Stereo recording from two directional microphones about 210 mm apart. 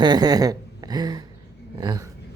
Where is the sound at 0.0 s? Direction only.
20° right (ahead or behind).